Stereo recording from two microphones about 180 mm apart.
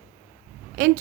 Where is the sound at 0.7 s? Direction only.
50° right (ahead or behind).